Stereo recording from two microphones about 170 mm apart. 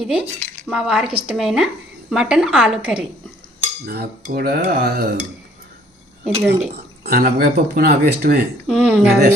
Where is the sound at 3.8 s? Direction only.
65° right (ahead or behind).